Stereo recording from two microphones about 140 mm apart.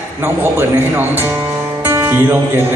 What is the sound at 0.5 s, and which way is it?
Speech, 15° right (ahead or behind).